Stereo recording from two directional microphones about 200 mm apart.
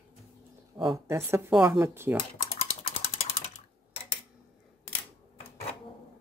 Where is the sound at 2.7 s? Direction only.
30° left (ahead or behind).